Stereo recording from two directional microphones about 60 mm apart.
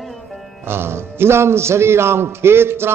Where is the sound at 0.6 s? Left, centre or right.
Right.